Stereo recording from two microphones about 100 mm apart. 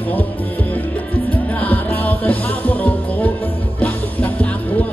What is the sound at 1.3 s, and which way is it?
Music, 15° left (ahead or behind).